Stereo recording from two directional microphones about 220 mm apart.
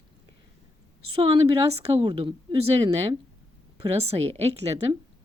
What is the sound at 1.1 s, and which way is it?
Speech, 25° right (ahead or behind).